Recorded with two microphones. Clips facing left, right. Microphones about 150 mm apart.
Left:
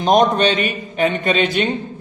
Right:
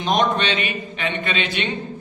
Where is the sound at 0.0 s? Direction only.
40° left (ahead or behind).